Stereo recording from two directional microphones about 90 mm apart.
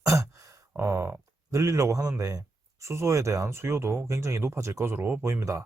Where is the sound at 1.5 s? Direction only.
35° right (ahead or behind).